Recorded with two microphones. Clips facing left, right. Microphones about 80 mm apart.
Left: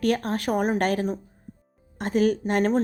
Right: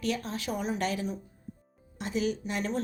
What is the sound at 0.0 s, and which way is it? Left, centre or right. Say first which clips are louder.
A woman's voice: left 8 dB; left.